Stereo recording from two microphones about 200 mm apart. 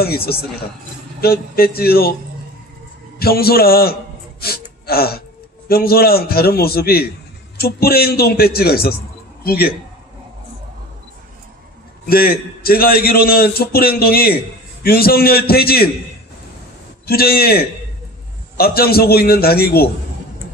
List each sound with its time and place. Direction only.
0.0 s a man's voice: 50° left (ahead or behind)
3.2 s a man's voice: 50° left (ahead or behind)
12.1 s a man's voice: 50° left (ahead or behind)
17.0 s a man's voice: 50° left (ahead or behind)